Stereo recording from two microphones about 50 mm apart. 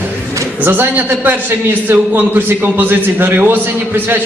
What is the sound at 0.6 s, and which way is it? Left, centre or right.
A man's voice, right.